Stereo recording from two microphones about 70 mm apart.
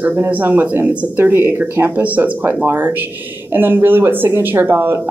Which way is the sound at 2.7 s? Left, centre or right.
Right.